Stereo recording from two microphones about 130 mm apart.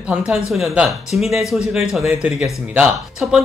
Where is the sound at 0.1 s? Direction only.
Centre (ahead or behind).